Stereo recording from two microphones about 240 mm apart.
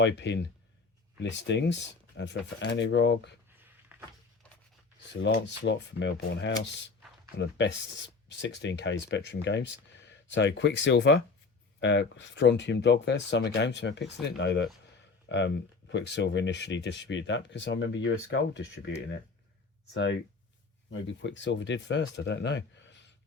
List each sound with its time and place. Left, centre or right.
0.0 s speech: left
3.9 s a sound: centre
5.2 s speech: left
8.3 s speech: left